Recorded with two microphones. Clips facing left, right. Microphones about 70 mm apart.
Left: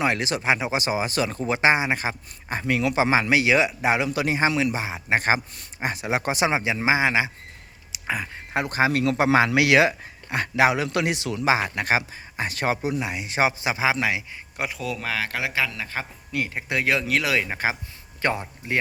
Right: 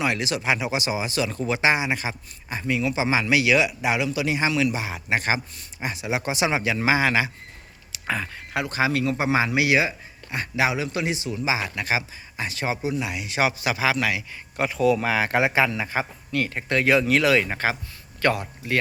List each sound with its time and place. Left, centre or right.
0.0 s speech: left
6.5 s a man's voice: left
7.9 s a sound: centre
8.5 s speech: left
9.0 s speech: left
10.2 s a man's voice: left
11.4 s speech: left
14.5 s a man's voice: centre
16.3 s speech: centre
18.2 s speech: left